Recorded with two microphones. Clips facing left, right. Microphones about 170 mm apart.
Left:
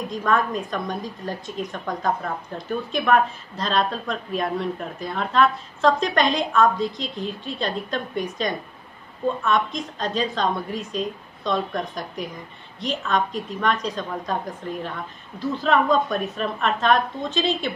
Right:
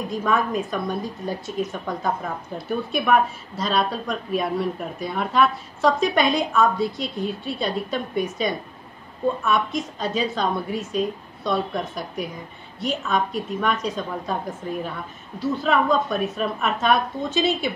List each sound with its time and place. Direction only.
0.1 s a woman's voice: 5° right (ahead or behind)